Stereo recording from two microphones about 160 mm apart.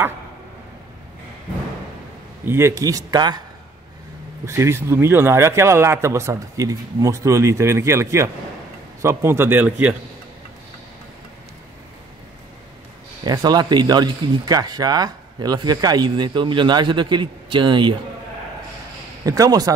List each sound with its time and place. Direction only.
2.4 s a man's voice: 15° right (ahead or behind)
4.5 s a man's voice: 15° right (ahead or behind)
13.2 s a man's voice: 25° right (ahead or behind)
19.2 s a man's voice: 20° right (ahead or behind)